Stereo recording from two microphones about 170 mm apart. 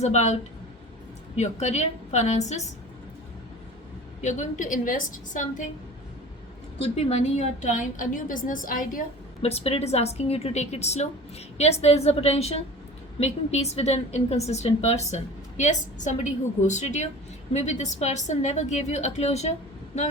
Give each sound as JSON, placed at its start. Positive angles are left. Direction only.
{"t": 0.0, "sound": "a woman's voice", "side_deg": 40}
{"t": 1.4, "sound": "a woman's voice", "side_deg": 40}
{"t": 4.2, "sound": "a woman's voice", "side_deg": 45}
{"t": 6.7, "sound": "a woman's voice", "side_deg": 40}
{"t": 9.4, "sound": "a woman's voice", "side_deg": 40}